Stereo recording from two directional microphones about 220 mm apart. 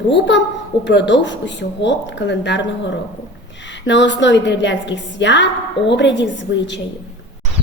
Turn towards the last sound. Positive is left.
turn(degrees=55)  # may be behind; listen again after turning